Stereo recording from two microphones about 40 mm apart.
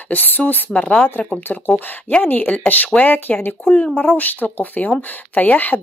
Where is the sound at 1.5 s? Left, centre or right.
Left.